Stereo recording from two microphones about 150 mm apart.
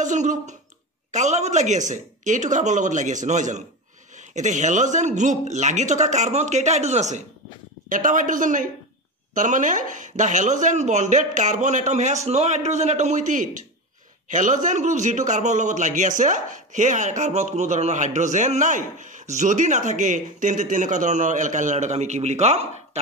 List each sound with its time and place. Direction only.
0.0 s a man's voice: 55° right (ahead or behind)